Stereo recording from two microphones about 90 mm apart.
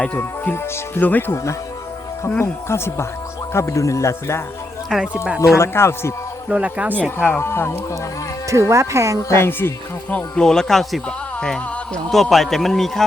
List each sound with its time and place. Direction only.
0.2 s speech: 25° left (ahead or behind)
2.4 s speech: 30° left (ahead or behind)
4.9 s speech: 5° right (ahead or behind)
5.5 s speech: 30° left (ahead or behind)
6.5 s speech: 15° right (ahead or behind)
7.2 s speech: 25° left (ahead or behind)
8.7 s speech: 35° right (ahead or behind)
9.3 s a man's voice: 25° left (ahead or behind); by 13.1 s 5° left (ahead or behind)